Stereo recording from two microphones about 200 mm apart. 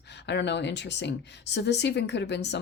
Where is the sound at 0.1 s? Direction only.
60° left (ahead or behind).